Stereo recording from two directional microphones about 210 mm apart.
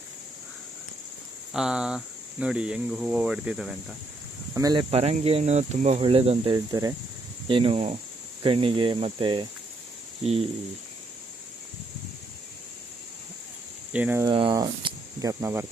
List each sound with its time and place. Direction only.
1.5 s speech: 5° right (ahead or behind)
4.5 s speech: 20° right (ahead or behind)
13.9 s speech: 10° right (ahead or behind)
14.3 s speech: 20° right (ahead or behind)